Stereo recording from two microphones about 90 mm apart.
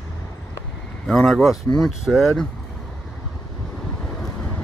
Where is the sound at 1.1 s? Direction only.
5° left (ahead or behind).